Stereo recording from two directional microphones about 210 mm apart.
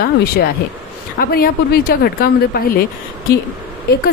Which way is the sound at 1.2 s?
45° left (ahead or behind).